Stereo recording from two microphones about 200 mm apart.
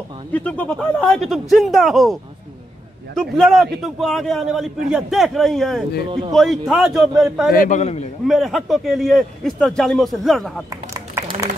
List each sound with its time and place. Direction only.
0.3 s a man's voice: 10° left (ahead or behind)
3.2 s a man's voice: centre (ahead or behind)
7.5 s a man's voice: 40° left (ahead or behind)
8.3 s a man's voice: centre (ahead or behind)
10.9 s a sound: 15° right (ahead or behind)